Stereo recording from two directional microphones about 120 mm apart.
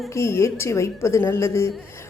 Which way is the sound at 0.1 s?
25° left (ahead or behind).